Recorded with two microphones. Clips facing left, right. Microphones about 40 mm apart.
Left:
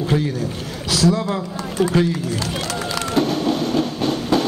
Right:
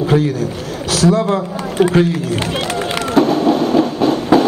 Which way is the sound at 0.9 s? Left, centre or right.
Right.